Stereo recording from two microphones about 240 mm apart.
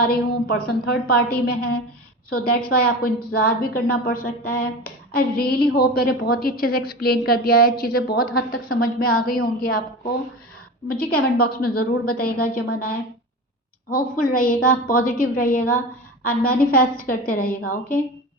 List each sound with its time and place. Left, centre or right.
0.0 s a woman's voice: left
10.8 s a woman's voice: left